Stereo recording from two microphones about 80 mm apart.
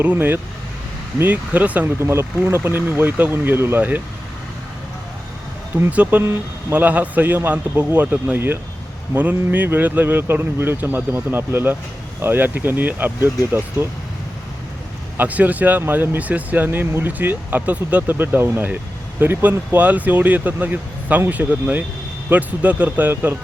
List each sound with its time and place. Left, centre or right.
0.0 s speech: right
2.0 s speech: right
5.9 s speech: centre
15.2 s speech: centre